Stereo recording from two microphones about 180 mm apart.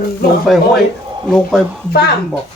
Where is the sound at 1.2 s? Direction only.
Centre (ahead or behind).